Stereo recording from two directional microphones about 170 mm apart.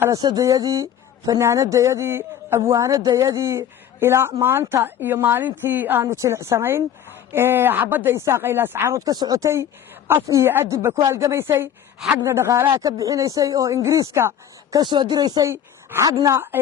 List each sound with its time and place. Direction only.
0.0 s speech: 20° right (ahead or behind)